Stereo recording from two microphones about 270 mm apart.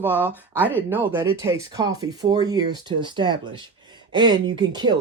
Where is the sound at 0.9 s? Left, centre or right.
Centre.